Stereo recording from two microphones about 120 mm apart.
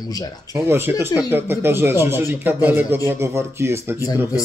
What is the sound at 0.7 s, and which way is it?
Speech, 20° right (ahead or behind).